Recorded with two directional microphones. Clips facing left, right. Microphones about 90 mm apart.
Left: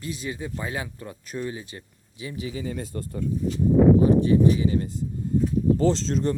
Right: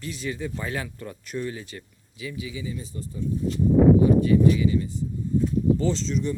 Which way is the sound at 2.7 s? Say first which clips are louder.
Left 3 dB; 65° left (ahead or behind).